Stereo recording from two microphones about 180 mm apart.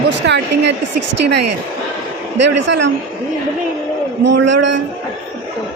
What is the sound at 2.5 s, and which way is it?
Speech, 80° right.